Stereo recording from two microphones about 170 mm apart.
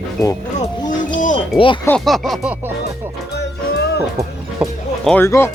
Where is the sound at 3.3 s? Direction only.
75° left (ahead or behind).